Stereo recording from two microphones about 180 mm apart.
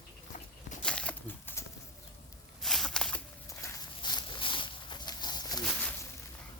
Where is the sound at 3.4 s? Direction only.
15° left (ahead or behind).